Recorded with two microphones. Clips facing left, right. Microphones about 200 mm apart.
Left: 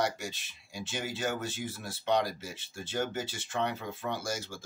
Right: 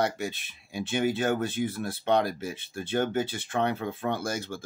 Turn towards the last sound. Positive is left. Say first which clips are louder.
# right 5 dB
turn(degrees=-55)  # may be behind; listen again after turning